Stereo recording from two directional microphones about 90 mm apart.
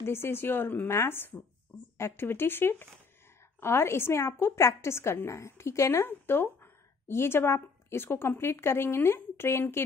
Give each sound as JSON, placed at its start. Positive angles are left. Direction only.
{"t": 0.0, "sound": "a woman's voice", "side_deg": 25}